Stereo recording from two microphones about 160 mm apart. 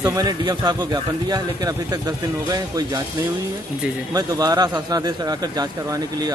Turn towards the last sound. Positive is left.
turn(degrees=-25)  # may be behind; listen again after turning